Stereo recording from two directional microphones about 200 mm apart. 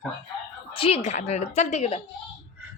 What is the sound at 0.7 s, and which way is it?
A woman's voice, 30° left (ahead or behind).